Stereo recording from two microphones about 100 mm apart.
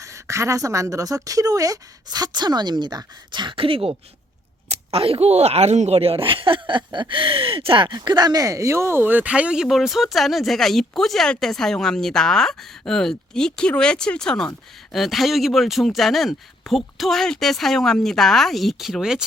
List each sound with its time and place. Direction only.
0.0 s a woman's voice: 30° right (ahead or behind); by 19.2 s 5° right (ahead or behind)